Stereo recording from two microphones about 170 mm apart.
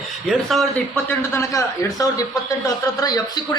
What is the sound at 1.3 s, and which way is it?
Speech, 20° left (ahead or behind).